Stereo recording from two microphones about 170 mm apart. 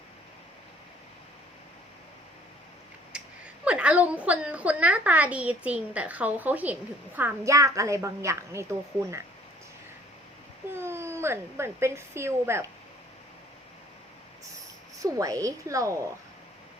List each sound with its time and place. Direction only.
3.1 s a woman's voice: 5° right (ahead or behind)
10.8 s speech: 15° right (ahead or behind)
15.0 s a woman's voice: 20° right (ahead or behind)